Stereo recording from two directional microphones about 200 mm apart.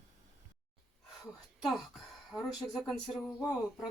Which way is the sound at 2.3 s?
Centre (ahead or behind).